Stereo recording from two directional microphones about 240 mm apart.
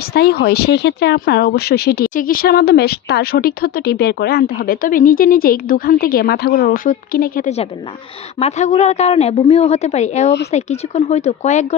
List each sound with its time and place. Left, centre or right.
0.1 s a woman's voice: left